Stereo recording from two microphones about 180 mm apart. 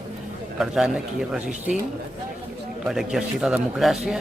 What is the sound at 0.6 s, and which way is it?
Speech, 5° right (ahead or behind).